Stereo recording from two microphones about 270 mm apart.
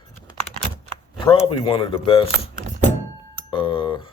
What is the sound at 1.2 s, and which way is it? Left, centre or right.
Speech, centre.